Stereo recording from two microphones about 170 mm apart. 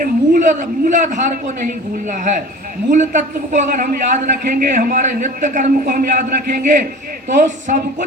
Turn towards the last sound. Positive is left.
turn(degrees=-50)  # may be behind; listen again after turning